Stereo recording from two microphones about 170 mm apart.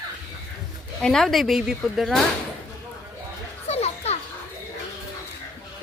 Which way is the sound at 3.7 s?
40° left (ahead or behind).